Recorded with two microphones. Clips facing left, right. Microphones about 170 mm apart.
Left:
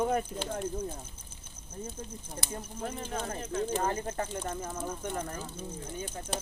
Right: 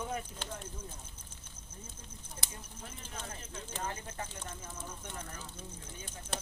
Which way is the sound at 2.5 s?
60° left (ahead or behind).